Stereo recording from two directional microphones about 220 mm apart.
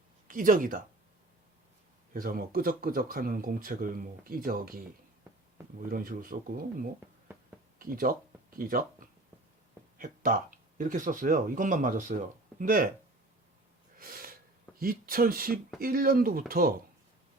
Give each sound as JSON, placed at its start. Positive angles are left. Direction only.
{"t": 0.3, "sound": "speech", "side_deg": -40}
{"t": 2.1, "sound": "speech", "side_deg": -40}
{"t": 5.8, "sound": "speech", "side_deg": -40}
{"t": 10.8, "sound": "speech", "side_deg": -35}
{"t": 14.0, "sound": "speech", "side_deg": -40}